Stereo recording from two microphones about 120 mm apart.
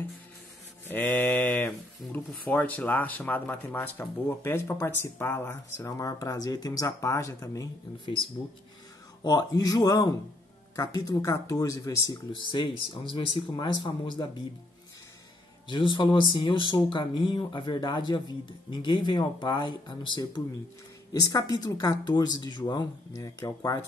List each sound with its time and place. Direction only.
0.8 s mantra: 15° left (ahead or behind)
2.1 s speech: 15° left (ahead or behind)
9.2 s speech: 30° left (ahead or behind)
12.3 s speech: 45° left (ahead or behind)
15.7 s speech: 45° left (ahead or behind); by 23.8 s 25° left (ahead or behind)